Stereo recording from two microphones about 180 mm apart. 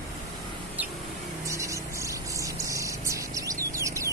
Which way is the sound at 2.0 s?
15° right (ahead or behind).